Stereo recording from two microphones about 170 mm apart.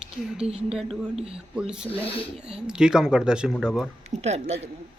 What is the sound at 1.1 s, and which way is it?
Speech, 35° right (ahead or behind).